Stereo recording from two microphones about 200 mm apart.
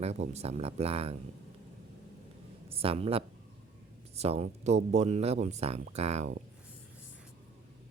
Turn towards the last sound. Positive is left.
turn(degrees=-35)  # may be behind; listen again after turning